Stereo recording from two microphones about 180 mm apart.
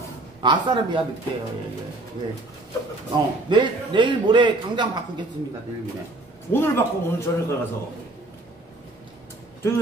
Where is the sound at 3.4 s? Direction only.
25° right (ahead or behind).